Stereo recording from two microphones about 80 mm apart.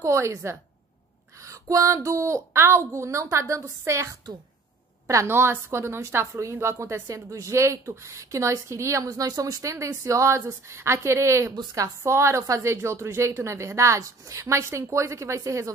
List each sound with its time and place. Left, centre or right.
0.0 s a woman's voice: right